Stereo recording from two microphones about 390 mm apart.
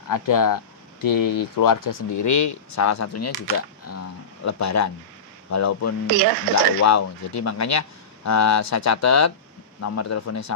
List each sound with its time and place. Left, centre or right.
0.1 s speech: left
4.5 s speech: left
6.1 s speech: right
6.8 s speech: left